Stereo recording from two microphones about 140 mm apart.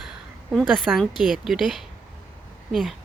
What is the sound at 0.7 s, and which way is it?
A woman's voice, centre (ahead or behind).